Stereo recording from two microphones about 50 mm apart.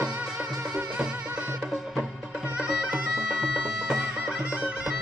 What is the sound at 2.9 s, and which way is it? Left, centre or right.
Bagpipes, centre.